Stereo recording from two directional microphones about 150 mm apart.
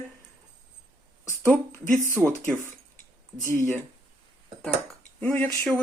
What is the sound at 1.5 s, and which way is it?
Speech, 10° left (ahead or behind).